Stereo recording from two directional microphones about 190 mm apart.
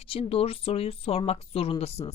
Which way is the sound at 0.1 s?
30° left (ahead or behind).